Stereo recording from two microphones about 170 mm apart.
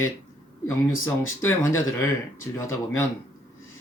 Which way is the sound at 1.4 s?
15° left (ahead or behind).